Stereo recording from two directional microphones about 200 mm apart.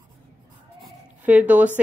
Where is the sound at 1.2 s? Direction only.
10° right (ahead or behind).